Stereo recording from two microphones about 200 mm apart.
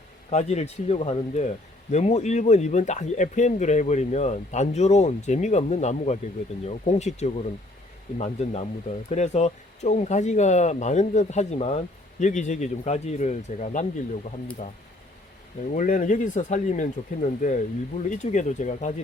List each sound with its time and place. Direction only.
0.3 s speech: 35° left (ahead or behind)
15.7 s speech: 40° left (ahead or behind)